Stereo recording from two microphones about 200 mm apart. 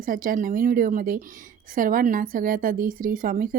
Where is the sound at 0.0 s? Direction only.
45° right (ahead or behind).